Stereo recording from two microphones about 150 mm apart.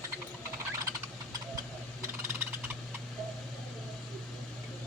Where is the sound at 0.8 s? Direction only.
25° right (ahead or behind).